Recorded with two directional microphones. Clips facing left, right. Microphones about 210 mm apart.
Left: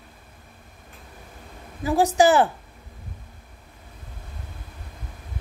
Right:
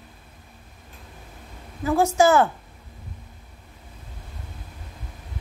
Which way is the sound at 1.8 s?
15° left (ahead or behind).